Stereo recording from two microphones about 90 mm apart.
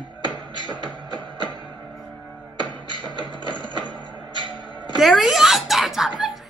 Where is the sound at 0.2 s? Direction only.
55° left (ahead or behind).